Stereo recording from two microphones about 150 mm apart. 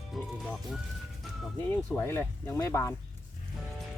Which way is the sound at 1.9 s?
15° left (ahead or behind).